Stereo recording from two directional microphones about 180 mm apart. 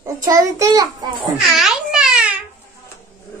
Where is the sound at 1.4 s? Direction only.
Centre (ahead or behind).